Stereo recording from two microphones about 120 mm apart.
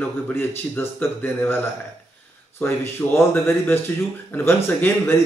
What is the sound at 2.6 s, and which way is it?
A man's voice, 20° left (ahead or behind).